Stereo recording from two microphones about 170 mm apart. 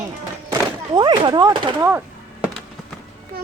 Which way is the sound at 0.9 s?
25° right (ahead or behind).